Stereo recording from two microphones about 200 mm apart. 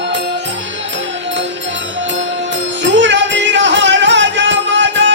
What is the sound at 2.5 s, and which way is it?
Music, 65° right (ahead or behind).